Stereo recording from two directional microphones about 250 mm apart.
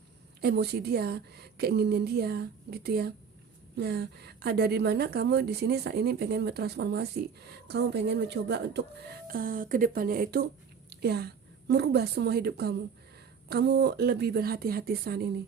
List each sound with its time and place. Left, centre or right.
0.4 s a woman's voice: right